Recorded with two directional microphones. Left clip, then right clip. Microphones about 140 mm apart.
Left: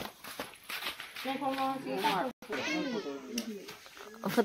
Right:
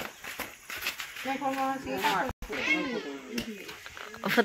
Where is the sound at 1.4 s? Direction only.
10° left (ahead or behind).